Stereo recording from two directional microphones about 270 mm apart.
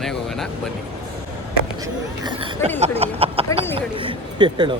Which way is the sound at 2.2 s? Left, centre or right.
Centre.